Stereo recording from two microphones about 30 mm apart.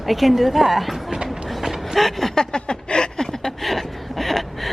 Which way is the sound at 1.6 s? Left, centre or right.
Centre.